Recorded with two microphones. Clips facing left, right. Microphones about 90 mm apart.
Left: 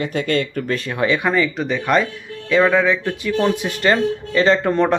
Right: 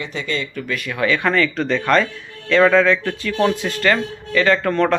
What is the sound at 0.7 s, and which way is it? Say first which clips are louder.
Speech: even; 30° left (ahead or behind).